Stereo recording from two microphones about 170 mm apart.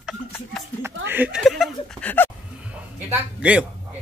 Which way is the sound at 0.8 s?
10° right (ahead or behind).